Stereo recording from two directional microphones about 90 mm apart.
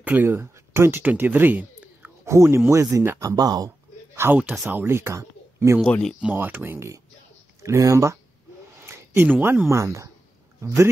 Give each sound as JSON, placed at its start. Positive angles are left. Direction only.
{"t": 0.0, "sound": "speech", "side_deg": -20}
{"t": 2.2, "sound": "speech", "side_deg": -30}
{"t": 3.2, "sound": "a sound", "side_deg": -45}
{"t": 4.4, "sound": "speech", "side_deg": -20}
{"t": 5.8, "sound": "speech", "side_deg": 10}
{"t": 6.3, "sound": "speech", "side_deg": -20}
{"t": 8.8, "sound": "speech", "side_deg": -25}